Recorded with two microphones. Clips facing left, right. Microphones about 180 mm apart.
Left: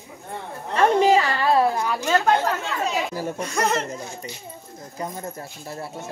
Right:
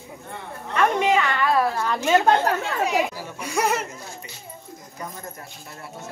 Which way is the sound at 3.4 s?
10° right (ahead or behind).